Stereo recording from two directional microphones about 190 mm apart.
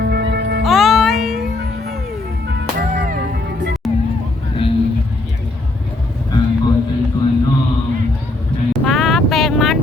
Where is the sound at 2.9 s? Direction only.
45° right (ahead or behind).